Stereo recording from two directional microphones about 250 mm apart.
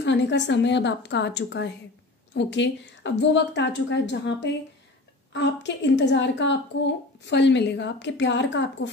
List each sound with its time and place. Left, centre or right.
0.0 s a woman's voice: left